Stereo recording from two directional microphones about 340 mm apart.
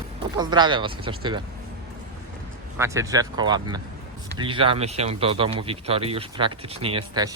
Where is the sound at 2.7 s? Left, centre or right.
Centre.